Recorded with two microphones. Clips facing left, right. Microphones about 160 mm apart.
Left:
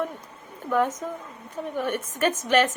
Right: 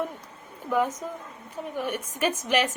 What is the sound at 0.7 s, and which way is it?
A woman's voice, 10° right (ahead or behind).